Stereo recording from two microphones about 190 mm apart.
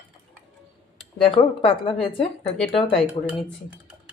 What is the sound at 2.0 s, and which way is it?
Speech, 25° left (ahead or behind).